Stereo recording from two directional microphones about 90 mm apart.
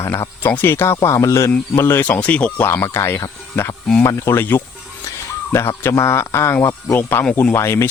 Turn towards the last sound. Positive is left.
turn(degrees=30)  # may be behind; listen again after turning